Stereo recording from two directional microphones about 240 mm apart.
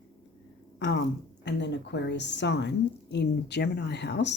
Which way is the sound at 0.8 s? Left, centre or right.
Left.